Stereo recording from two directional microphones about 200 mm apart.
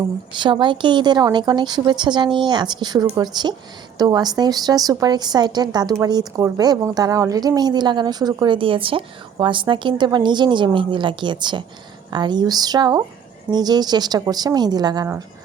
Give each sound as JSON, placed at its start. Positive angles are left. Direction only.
{"t": 0.3, "sound": "a woman's voice", "side_deg": -25}